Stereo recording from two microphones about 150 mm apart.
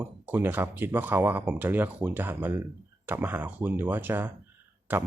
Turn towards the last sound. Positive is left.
turn(degrees=-10)  # may be behind; listen again after turning